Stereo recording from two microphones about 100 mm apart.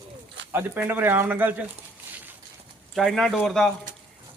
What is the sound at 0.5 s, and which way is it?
Speech, 20° right (ahead or behind).